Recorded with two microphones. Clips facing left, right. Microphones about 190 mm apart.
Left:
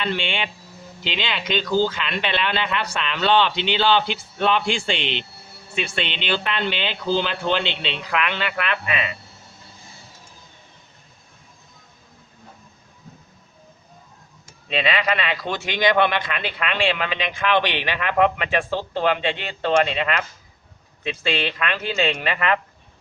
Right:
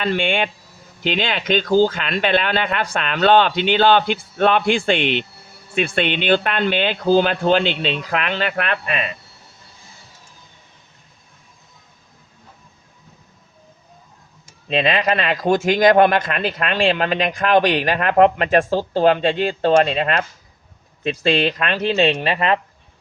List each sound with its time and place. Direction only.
0.0 s speech: 50° right (ahead or behind)
14.7 s speech: 45° right (ahead or behind)